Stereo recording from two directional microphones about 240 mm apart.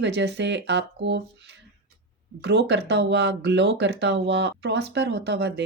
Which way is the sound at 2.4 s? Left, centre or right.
Right.